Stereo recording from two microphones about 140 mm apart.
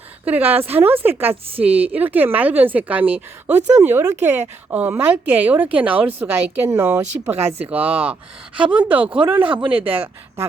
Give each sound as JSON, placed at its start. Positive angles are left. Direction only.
{"t": 0.3, "sound": "a woman's voice", "side_deg": -15}
{"t": 9.4, "sound": "speech", "side_deg": -35}
{"t": 9.6, "sound": "a woman's voice", "side_deg": -10}